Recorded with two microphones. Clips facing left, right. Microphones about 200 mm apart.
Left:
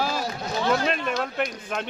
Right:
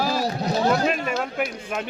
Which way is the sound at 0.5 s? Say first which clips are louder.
Right 2 dB; 40° right (ahead or behind).